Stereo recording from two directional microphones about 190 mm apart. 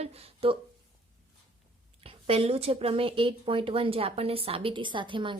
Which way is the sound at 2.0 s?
30° right (ahead or behind).